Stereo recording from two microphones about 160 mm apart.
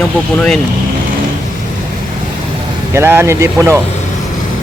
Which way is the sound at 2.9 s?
15° right (ahead or behind).